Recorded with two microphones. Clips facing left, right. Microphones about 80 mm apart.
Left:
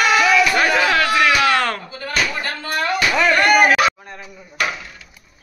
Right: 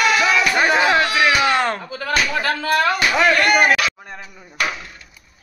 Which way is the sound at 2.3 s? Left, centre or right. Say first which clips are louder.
Right 5 dB; right.